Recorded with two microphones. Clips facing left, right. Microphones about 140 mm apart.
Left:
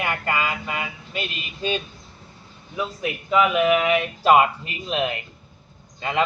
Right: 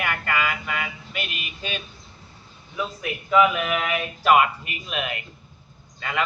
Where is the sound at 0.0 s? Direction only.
25° left (ahead or behind).